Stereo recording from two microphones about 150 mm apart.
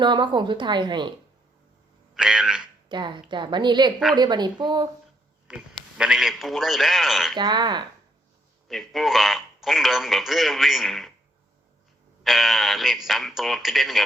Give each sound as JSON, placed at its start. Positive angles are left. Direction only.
{"t": 0.0, "sound": "a woman's voice", "side_deg": -30}
{"t": 2.1, "sound": "a sound", "side_deg": -5}
{"t": 2.9, "sound": "a woman's voice", "side_deg": -30}
{"t": 5.5, "sound": "speech", "side_deg": -5}
{"t": 7.3, "sound": "speech", "side_deg": -30}
{"t": 8.6, "sound": "speech", "side_deg": 0}
{"t": 12.2, "sound": "speech", "side_deg": 0}